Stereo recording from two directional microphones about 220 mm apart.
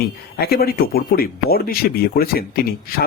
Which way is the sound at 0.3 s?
45° left (ahead or behind).